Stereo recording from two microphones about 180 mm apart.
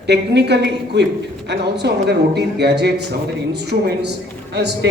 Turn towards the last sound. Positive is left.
turn(degrees=-70)  # may be behind; listen again after turning